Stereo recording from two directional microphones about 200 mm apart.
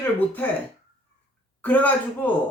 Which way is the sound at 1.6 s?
5° left (ahead or behind).